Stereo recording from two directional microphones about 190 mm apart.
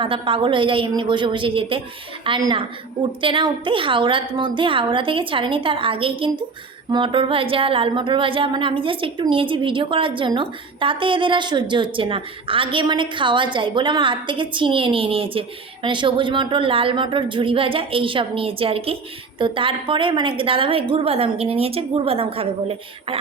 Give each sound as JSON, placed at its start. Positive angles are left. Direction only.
{"t": 0.0, "sound": "a woman's voice", "side_deg": -25}